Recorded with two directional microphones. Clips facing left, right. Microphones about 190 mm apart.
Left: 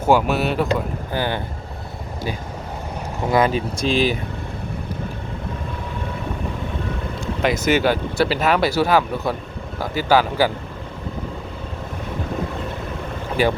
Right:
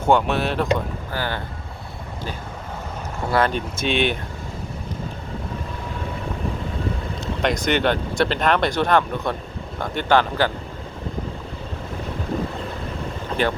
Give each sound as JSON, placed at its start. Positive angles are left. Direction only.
{"t": 0.0, "sound": "speech", "side_deg": 5}
{"t": 1.1, "sound": "speech", "side_deg": 20}
{"t": 3.2, "sound": "speech", "side_deg": 15}
{"t": 3.5, "sound": "speech", "side_deg": 0}
{"t": 7.2, "sound": "speech", "side_deg": 5}
{"t": 13.4, "sound": "speech", "side_deg": 10}